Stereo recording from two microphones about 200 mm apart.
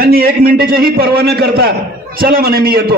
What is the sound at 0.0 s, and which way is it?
A man's voice, 50° right (ahead or behind).